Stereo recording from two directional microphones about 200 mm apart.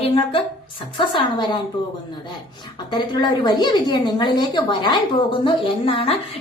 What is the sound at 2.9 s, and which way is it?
A woman's voice, 20° left (ahead or behind).